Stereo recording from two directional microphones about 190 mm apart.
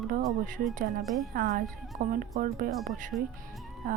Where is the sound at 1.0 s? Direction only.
Centre (ahead or behind).